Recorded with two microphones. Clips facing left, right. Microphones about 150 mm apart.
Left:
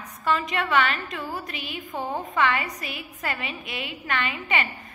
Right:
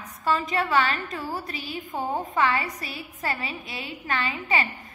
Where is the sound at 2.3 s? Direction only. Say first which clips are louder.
Left 1 dB; 35° right (ahead or behind).